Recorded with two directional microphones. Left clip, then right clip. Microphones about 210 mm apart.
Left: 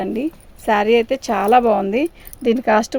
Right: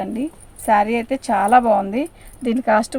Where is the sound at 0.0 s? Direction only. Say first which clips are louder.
Left 3 dB; 45° left (ahead or behind).